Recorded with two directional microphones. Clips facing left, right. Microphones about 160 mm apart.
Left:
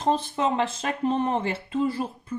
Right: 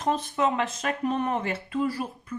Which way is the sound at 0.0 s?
30° left (ahead or behind).